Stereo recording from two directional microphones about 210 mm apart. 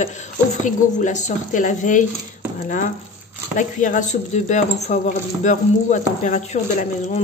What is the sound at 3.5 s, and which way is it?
Speech, 35° left (ahead or behind).